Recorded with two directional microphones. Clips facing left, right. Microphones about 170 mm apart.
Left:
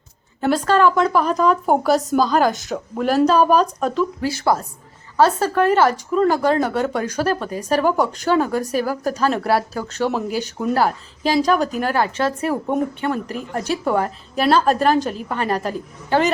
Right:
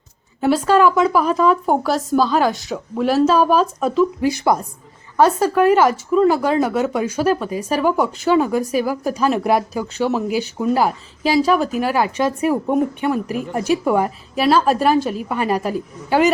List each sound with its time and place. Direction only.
0.4 s a woman's voice: 10° right (ahead or behind)
4.2 s speech: 15° right (ahead or behind)